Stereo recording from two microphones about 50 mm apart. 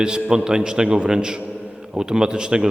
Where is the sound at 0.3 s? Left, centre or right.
Centre.